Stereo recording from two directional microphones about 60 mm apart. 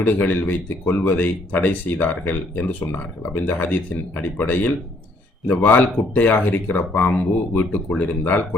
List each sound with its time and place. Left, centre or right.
0.0 s speech: left